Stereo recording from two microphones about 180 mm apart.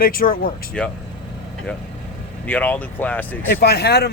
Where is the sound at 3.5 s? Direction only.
60° left (ahead or behind).